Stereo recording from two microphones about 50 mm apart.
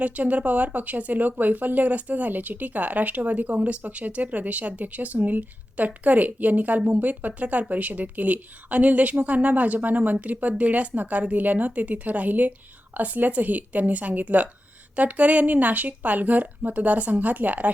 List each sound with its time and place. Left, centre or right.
0.0 s speech: right